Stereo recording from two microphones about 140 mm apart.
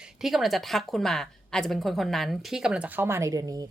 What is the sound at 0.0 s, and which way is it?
A woman's voice, 5° right (ahead or behind).